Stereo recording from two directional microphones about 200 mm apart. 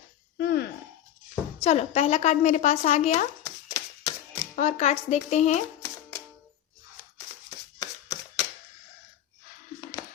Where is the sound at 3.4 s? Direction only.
15° left (ahead or behind).